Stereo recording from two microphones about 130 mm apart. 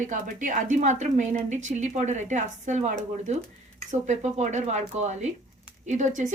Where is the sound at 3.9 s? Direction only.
65° right (ahead or behind).